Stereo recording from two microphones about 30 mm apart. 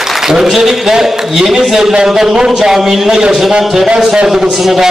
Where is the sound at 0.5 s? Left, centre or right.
Centre.